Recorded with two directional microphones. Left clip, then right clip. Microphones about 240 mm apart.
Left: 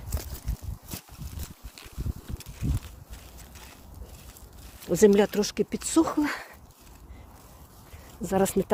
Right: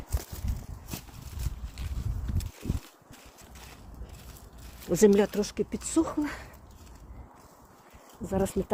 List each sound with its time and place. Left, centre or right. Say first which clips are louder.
4.9 s speech: left 2 dB; centre
5.4 s speech: left 3 dB; left
8.2 s speech: left 5 dB; left